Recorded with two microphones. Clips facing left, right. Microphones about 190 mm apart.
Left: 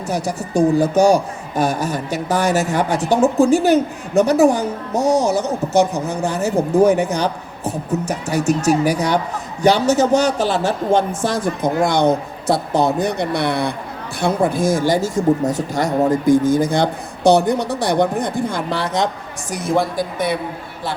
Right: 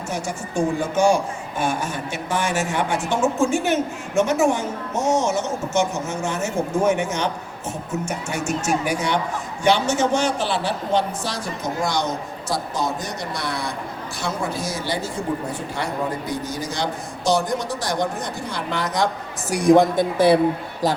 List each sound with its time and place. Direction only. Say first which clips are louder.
0.1 s speech: left 7 dB; 35° left (ahead or behind); by 18.6 s 55° left (ahead or behind)
18.7 s speech: right 1 dB; 30° left (ahead or behind)
19.5 s a man's voice: right 5 dB; 15° right (ahead or behind)
20.1 s a woman's voice: right 7 dB; 30° right (ahead or behind)